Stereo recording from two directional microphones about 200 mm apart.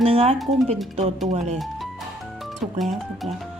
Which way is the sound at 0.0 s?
30° right (ahead or behind).